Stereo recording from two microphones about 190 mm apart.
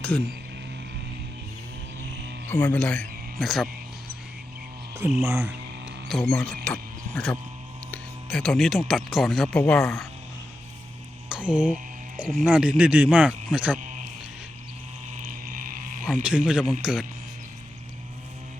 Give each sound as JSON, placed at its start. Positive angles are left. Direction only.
{"t": 2.5, "sound": "speech", "side_deg": 10}
{"t": 4.9, "sound": "speech", "side_deg": -15}
{"t": 6.1, "sound": "speech", "side_deg": 0}
{"t": 11.3, "sound": "a sound", "side_deg": -5}
{"t": 12.2, "sound": "speech", "side_deg": 5}
{"t": 12.5, "sound": "speech", "side_deg": -5}
{"t": 13.7, "sound": "music", "side_deg": -40}
{"t": 15.2, "sound": "a sound", "side_deg": -45}
{"t": 16.2, "sound": "speech", "side_deg": -5}